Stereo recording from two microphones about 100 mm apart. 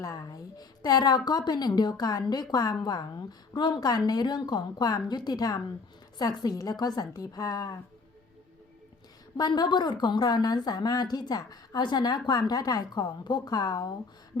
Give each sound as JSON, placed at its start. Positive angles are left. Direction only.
{"t": 0.0, "sound": "a woman's voice", "side_deg": 35}
{"t": 9.4, "sound": "a woman's voice", "side_deg": 45}